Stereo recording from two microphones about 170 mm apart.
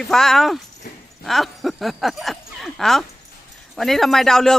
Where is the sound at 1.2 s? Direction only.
Centre (ahead or behind).